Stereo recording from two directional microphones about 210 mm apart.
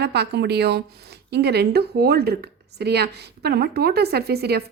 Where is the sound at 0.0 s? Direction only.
50° right (ahead or behind).